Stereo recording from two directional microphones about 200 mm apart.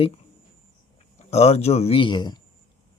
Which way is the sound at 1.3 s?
30° left (ahead or behind).